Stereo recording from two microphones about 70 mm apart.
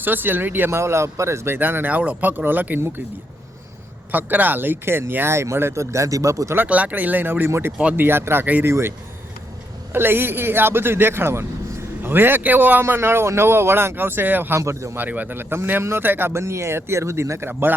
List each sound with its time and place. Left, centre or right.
0.0 s speech: right
0.8 s speech: right
1.5 s speech: right
4.1 s speech: right
6.6 s speech: centre; by 8.9 s right
9.9 s speech: right
12.8 s speech: right
14.6 s a man's voice: right
14.9 s speech: right
17.5 s speech: right